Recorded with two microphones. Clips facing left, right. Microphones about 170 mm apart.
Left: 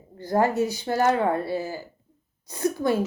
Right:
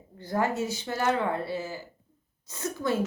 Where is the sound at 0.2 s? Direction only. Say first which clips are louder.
Left 6 dB; 40° left (ahead or behind).